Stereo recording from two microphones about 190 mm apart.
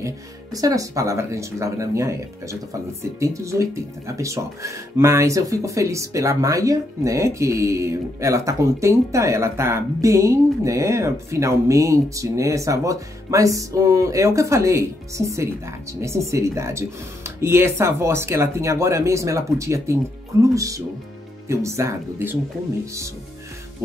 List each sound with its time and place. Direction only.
0.0 s speech: 20° right (ahead or behind)